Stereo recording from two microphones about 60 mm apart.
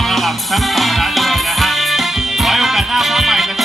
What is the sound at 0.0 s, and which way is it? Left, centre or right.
Music, centre.